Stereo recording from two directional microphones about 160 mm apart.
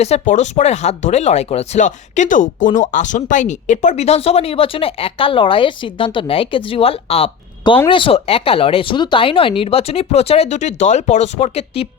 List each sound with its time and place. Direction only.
0.0 s speech: 45° left (ahead or behind)